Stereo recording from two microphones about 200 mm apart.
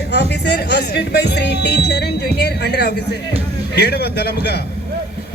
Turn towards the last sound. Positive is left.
turn(degrees=55)  # may be behind; listen again after turning